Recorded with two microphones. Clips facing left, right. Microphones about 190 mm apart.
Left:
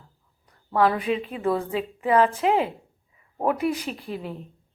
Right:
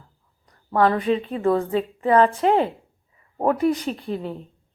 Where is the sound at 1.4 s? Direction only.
50° right (ahead or behind).